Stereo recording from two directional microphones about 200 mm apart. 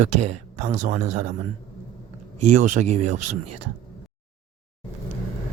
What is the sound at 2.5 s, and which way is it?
Speech, 35° right (ahead or behind).